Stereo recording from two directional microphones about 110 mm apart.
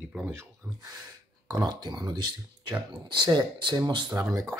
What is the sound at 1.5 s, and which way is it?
Speech, 40° right (ahead or behind).